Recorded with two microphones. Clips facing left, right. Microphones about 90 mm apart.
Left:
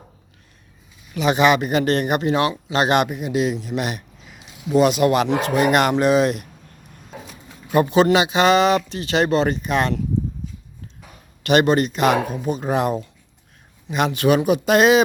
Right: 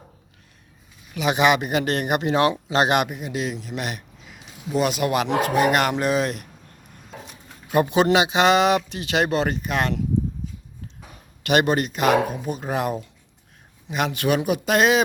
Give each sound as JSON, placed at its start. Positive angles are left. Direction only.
{"t": 1.1, "sound": "speech", "side_deg": -10}
{"t": 2.2, "sound": "speech", "side_deg": -30}
{"t": 2.8, "sound": "speech", "side_deg": -10}
{"t": 3.1, "sound": "speech", "side_deg": 5}
{"t": 7.7, "sound": "speech", "side_deg": -15}
{"t": 11.4, "sound": "speech", "side_deg": -10}